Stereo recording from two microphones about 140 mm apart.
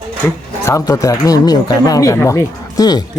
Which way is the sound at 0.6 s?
25° left (ahead or behind).